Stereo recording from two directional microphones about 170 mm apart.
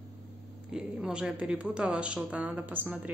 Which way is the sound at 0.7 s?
5° right (ahead or behind).